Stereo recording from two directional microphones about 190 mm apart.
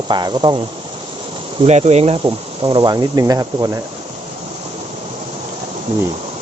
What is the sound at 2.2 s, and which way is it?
Speech, 25° right (ahead or behind).